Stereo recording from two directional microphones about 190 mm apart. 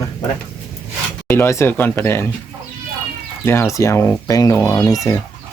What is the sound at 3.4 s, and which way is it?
Speech, 10° left (ahead or behind).